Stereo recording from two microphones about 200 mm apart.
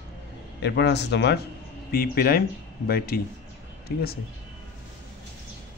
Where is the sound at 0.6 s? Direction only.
60° left (ahead or behind).